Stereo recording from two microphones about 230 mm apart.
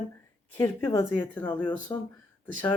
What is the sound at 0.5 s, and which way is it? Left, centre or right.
Speech, centre.